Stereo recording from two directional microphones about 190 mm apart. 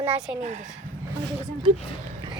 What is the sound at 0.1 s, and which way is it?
Speech, 5° right (ahead or behind).